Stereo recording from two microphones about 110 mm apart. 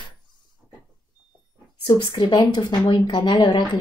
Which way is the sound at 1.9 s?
40° left (ahead or behind).